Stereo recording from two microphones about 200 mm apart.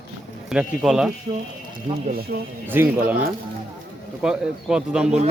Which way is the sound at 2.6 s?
10° right (ahead or behind).